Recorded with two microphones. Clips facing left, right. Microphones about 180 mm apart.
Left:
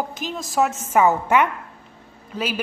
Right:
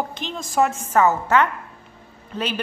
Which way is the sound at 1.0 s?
15° left (ahead or behind).